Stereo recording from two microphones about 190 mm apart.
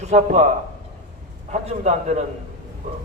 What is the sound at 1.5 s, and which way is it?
Speech, 35° right (ahead or behind).